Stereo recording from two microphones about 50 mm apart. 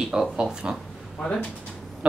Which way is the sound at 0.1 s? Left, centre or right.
Centre.